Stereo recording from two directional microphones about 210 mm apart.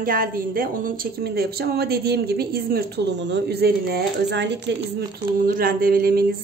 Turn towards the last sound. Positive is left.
turn(degrees=-45)  # may be behind; listen again after turning